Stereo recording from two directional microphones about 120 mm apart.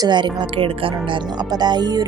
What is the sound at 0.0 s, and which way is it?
Speech, 40° right (ahead or behind).